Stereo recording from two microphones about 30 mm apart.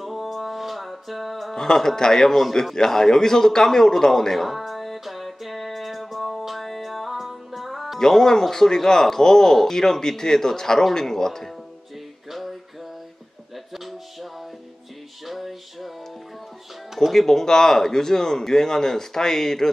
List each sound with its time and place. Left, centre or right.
0.0 s music: centre
1.5 s a man's voice: centre
4.6 s music: centre
8.0 s speech: centre
12.3 s music: centre
15.2 s music: centre
17.1 s speech: centre